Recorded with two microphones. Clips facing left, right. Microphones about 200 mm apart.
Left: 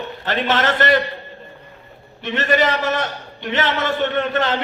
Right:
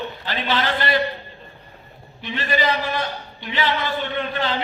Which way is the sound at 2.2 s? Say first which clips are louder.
Left 4 dB; 75° left (ahead or behind).